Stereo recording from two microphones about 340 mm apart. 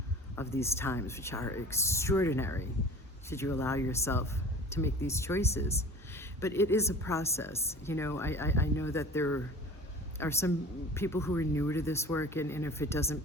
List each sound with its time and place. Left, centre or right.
0.3 s a woman's voice: centre